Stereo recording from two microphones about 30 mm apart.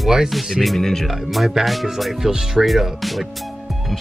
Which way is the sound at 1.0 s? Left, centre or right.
Centre.